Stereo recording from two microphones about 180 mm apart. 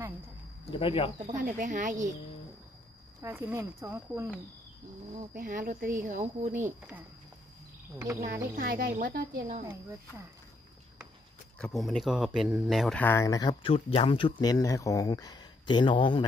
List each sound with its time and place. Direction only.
0.7 s speech: 30° left (ahead or behind)
1.2 s a woman's voice: 45° right (ahead or behind)
3.2 s speech: 10° right (ahead or behind)
5.3 s a woman's voice: 50° right (ahead or behind)
8.2 s a woman's voice: 50° right (ahead or behind)
11.5 s speech: centre (ahead or behind)
13.0 s speech: 15° left (ahead or behind)